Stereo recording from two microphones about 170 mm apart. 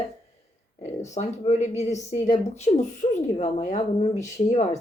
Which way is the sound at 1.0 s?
40° left (ahead or behind).